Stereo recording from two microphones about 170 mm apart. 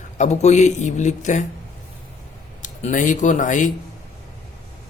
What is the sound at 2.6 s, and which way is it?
Speech, 50° left (ahead or behind).